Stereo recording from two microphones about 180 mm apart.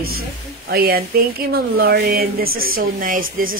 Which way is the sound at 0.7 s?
55° right (ahead or behind).